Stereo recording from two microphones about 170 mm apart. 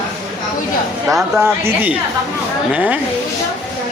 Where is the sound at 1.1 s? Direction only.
Centre (ahead or behind).